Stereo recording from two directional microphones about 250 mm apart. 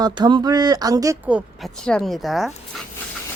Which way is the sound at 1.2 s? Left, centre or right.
Centre.